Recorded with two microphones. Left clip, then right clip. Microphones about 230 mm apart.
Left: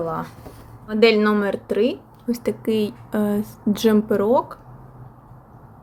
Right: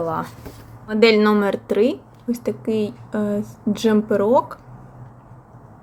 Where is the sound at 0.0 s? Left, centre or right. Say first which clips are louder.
Right 2 dB; centre.